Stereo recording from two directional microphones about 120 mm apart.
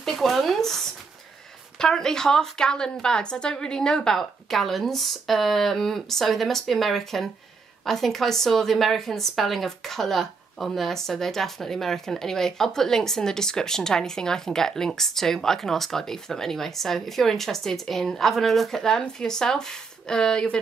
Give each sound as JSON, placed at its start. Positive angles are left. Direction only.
{"t": 0.0, "sound": "a woman's voice", "side_deg": 0}